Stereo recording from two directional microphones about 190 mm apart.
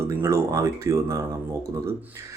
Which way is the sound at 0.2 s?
15° right (ahead or behind).